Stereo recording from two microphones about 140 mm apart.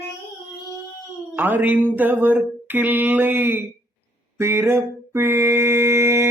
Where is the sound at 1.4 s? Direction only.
15° right (ahead or behind).